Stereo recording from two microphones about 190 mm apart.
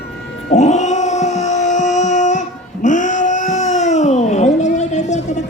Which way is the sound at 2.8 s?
40° left (ahead or behind).